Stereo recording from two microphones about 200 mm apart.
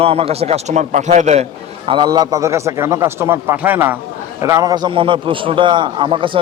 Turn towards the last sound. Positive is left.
turn(degrees=-25)  # may be behind; listen again after turning